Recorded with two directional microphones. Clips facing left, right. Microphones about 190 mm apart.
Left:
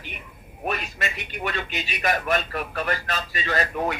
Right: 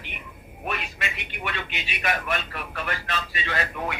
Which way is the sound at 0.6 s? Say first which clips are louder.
Left 3 dB; 40° left (ahead or behind).